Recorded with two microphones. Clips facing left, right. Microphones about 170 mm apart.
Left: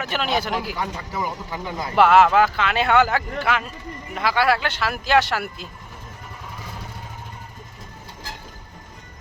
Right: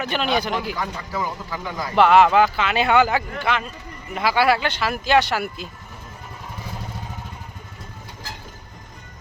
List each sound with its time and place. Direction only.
0.0 s speech: centre (ahead or behind)
0.8 s a man's voice: 20° left (ahead or behind)
2.0 s speech: centre (ahead or behind)